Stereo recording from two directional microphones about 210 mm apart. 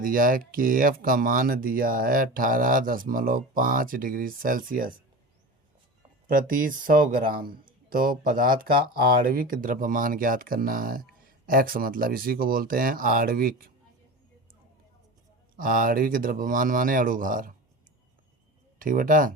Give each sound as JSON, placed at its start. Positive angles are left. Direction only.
{"t": 0.0, "sound": "speech", "side_deg": -40}
{"t": 6.2, "sound": "speech", "side_deg": -40}
{"t": 15.5, "sound": "speech", "side_deg": -40}
{"t": 18.8, "sound": "speech", "side_deg": -40}